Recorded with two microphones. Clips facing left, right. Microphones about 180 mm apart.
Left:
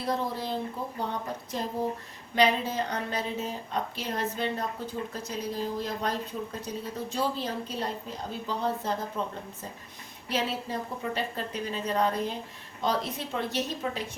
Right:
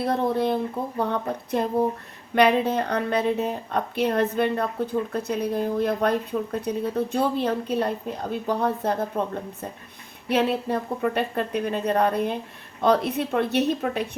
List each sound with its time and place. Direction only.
0.0 s a woman's voice: 60° right (ahead or behind)
10.2 s a woman's voice: 60° right (ahead or behind)